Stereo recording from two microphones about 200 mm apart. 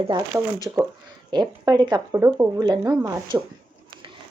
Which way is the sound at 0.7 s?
10° right (ahead or behind).